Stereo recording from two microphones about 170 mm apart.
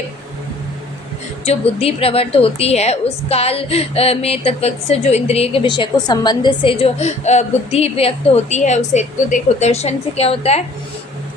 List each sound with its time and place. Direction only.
1.5 s a woman's voice: 35° left (ahead or behind)